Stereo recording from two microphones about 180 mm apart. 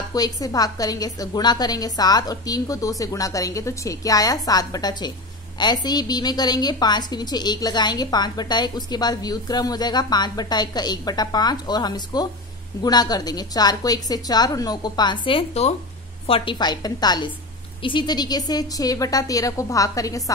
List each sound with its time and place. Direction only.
0.1 s a woman's voice: 20° left (ahead or behind)